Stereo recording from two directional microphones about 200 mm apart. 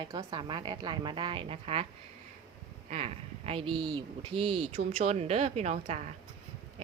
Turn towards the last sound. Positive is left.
turn(degrees=-35)  # may be behind; listen again after turning